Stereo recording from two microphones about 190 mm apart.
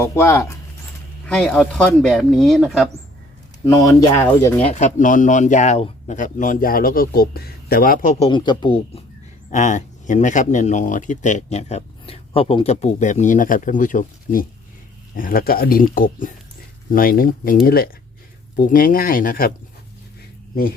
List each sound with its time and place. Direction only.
0.0 s speech: 15° left (ahead or behind)
3.7 s speech: 15° left (ahead or behind)
4.6 s speech: 35° left (ahead or behind)
8.2 s speech: 25° left (ahead or behind)
9.5 s speech: 40° left (ahead or behind)